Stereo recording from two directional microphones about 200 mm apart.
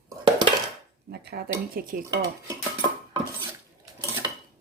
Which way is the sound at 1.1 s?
55° right (ahead or behind).